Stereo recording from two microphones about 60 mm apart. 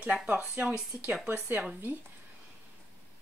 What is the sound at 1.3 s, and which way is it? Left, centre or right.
Speech, right.